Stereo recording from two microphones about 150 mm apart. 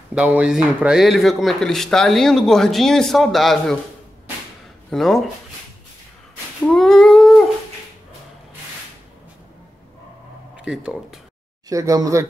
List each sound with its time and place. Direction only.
0.1 s speech: 5° right (ahead or behind)
4.9 s speech: centre (ahead or behind)
6.6 s humming: 5° left (ahead or behind)
10.5 s speech: 5° right (ahead or behind)
11.7 s speech: 20° right (ahead or behind)